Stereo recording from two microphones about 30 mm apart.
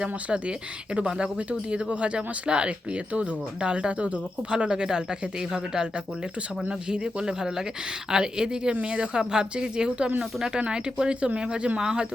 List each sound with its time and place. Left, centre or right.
0.0 s speech: right
4.7 s a man's voice: right